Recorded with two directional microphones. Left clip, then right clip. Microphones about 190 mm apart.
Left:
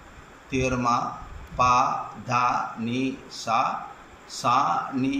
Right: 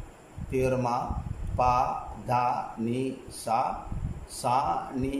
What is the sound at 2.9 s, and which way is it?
Speech, 20° right (ahead or behind).